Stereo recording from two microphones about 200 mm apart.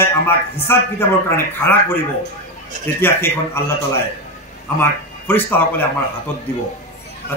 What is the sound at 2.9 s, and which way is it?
A man's voice, 10° left (ahead or behind).